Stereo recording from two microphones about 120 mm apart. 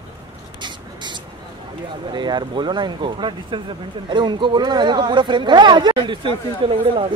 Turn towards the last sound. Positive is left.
turn(degrees=-45)  # may be behind; listen again after turning